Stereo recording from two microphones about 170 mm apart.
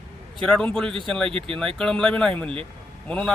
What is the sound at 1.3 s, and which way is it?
Speech, 30° right (ahead or behind).